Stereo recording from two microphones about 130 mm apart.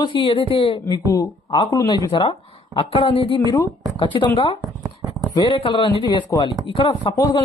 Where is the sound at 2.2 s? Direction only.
45° left (ahead or behind).